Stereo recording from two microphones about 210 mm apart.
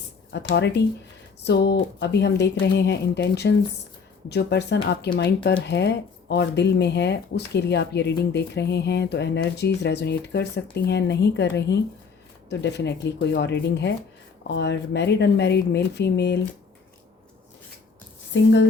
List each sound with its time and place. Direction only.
0.3 s speech: 55° left (ahead or behind)
18.3 s speech: 60° left (ahead or behind)